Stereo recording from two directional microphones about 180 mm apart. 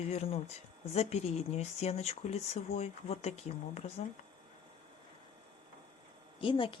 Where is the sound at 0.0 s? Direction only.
35° left (ahead or behind).